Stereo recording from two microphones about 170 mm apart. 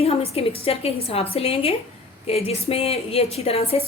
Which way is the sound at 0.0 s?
35° left (ahead or behind).